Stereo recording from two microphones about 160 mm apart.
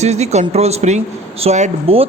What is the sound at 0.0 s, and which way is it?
A man's voice, 45° right (ahead or behind).